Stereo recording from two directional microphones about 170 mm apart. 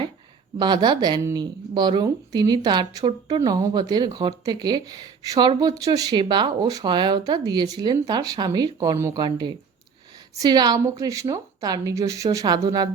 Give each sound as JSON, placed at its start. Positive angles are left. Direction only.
{"t": 0.6, "sound": "speech", "side_deg": -25}